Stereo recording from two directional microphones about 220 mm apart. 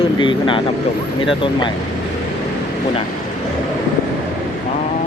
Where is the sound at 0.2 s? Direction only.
20° left (ahead or behind).